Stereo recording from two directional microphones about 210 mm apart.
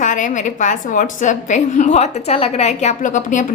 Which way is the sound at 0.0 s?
35° left (ahead or behind).